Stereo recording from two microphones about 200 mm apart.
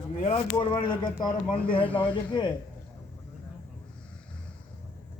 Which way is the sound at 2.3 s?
20° left (ahead or behind).